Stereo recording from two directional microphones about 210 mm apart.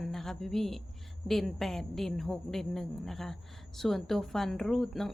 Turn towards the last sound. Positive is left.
turn(degrees=0)  # may be behind; listen again after turning